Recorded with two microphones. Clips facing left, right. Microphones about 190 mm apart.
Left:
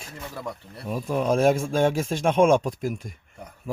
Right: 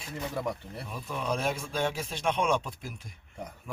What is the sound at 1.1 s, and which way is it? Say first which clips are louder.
Speech: left 11 dB; 45° left (ahead or behind).